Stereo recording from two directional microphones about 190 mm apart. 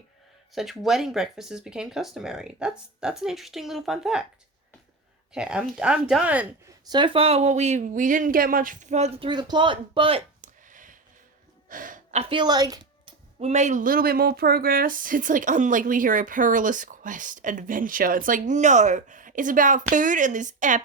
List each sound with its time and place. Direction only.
0.5 s speech: centre (ahead or behind)
5.3 s speech: 5° right (ahead or behind)
6.9 s speech: 25° right (ahead or behind)
10.4 s a sound: 45° right (ahead or behind)
11.7 s a woman's voice: 45° right (ahead or behind)